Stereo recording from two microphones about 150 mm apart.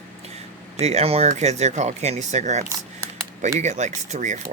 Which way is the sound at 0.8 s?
45° right (ahead or behind).